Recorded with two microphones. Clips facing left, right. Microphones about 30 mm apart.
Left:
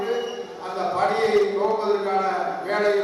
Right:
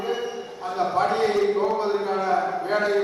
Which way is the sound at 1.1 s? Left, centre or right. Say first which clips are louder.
Left 1 dB; centre.